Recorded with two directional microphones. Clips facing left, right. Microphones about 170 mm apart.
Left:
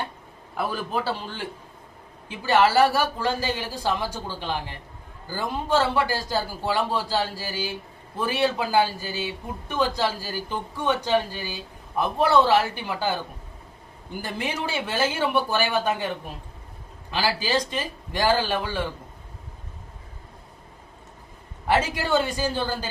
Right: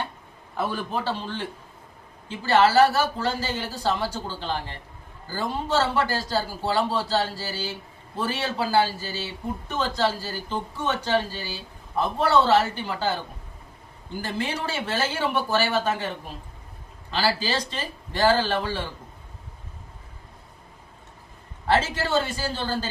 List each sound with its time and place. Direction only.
0.5 s speech: 10° left (ahead or behind)
14.1 s speech: 15° left (ahead or behind)
21.7 s speech: 15° left (ahead or behind)